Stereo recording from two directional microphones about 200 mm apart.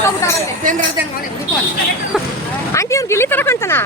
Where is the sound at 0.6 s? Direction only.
40° right (ahead or behind).